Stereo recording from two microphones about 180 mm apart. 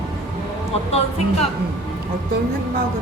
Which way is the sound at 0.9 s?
35° left (ahead or behind).